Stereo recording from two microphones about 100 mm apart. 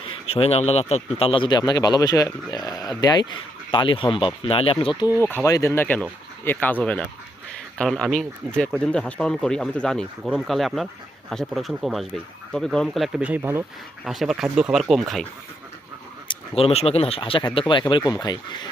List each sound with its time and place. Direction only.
0.0 s speech: 70° left (ahead or behind)
5.2 s speech: 25° left (ahead or behind); by 13.1 s 5° left (ahead or behind)
13.1 s speech: 15° right (ahead or behind)
14.0 s speech: 5° right (ahead or behind)
16.3 s speech: 80° left; by 18.7 s 45° left (ahead or behind)